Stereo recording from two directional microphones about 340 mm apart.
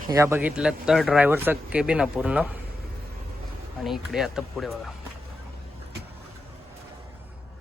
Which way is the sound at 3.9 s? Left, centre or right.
Centre.